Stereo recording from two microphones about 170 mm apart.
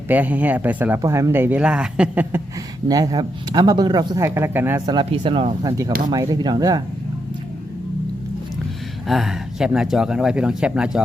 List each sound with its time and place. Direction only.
0.1 s speech: 10° right (ahead or behind)
2.9 s speech: 20° right (ahead or behind)
4.9 s speech: 25° right (ahead or behind)
5.6 s speech: 20° right (ahead or behind)
9.0 s speech: centre (ahead or behind)